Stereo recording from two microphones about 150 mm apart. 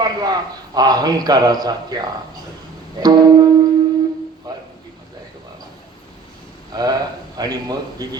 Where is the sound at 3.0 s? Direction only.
25° right (ahead or behind).